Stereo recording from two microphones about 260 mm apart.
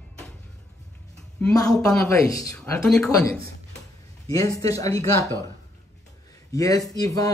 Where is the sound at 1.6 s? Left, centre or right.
Centre.